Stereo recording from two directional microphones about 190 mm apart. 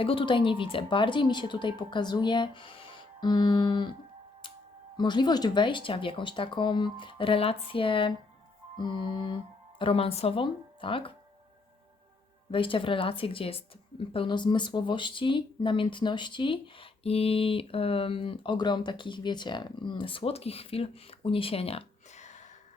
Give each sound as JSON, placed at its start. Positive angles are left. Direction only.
{"t": 0.0, "sound": "speech", "side_deg": 30}
{"t": 4.9, "sound": "speech", "side_deg": 25}
{"t": 12.5, "sound": "speech", "side_deg": 25}